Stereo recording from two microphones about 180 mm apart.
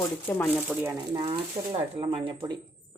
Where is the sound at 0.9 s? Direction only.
25° right (ahead or behind).